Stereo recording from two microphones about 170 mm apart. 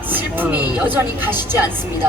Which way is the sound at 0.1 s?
10° right (ahead or behind).